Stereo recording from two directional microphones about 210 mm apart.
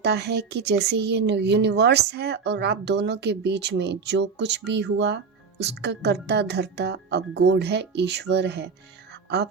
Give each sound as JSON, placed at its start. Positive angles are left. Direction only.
{"t": 0.0, "sound": "speech", "side_deg": -55}